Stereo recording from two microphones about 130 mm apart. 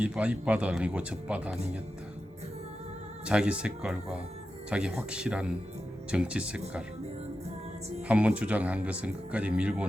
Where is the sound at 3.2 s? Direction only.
10° right (ahead or behind).